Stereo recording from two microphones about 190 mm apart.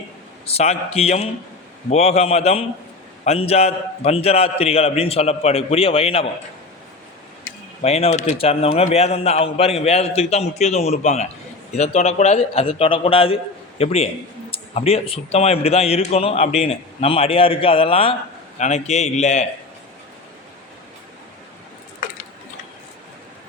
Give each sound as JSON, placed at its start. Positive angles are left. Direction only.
{"t": 0.4, "sound": "a man's voice", "side_deg": 35}
{"t": 7.8, "sound": "a man's voice", "side_deg": 35}